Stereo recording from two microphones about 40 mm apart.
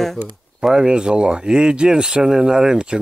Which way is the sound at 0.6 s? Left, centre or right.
Centre.